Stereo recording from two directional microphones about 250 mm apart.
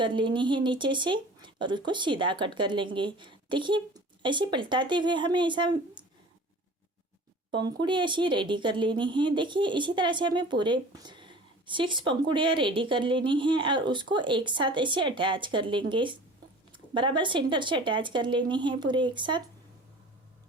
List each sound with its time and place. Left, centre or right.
0.0 s speech: centre
7.5 s speech: centre